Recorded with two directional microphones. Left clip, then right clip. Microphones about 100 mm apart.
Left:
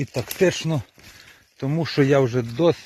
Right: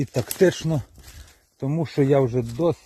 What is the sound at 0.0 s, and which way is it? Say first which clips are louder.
Speech: right 1 dB; 90° right.